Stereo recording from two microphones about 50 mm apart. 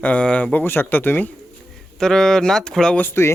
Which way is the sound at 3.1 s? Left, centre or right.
Left.